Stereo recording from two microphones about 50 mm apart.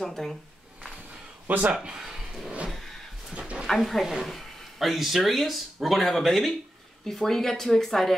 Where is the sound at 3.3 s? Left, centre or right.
Right.